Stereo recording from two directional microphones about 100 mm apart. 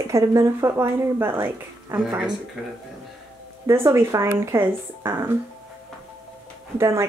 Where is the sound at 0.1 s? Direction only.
30° right (ahead or behind).